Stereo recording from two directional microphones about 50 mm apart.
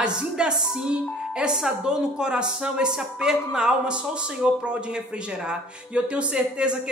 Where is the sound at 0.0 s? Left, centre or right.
Centre.